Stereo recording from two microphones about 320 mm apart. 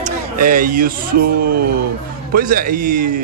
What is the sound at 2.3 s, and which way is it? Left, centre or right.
Speech, right.